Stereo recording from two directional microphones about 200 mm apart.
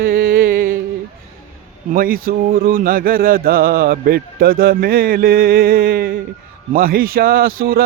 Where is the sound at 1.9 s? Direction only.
45° right (ahead or behind).